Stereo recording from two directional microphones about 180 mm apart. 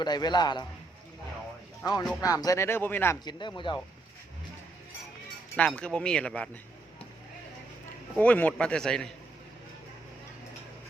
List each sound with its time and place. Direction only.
0.0 s a man's voice: 25° left (ahead or behind)
1.8 s a man's voice: 20° left (ahead or behind)
3.2 s a man's voice: 25° left (ahead or behind)
5.5 s speech: 5° left (ahead or behind)
8.2 s speech: 10° left (ahead or behind)